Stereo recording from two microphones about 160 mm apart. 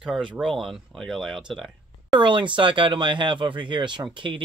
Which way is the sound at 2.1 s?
30° right (ahead or behind).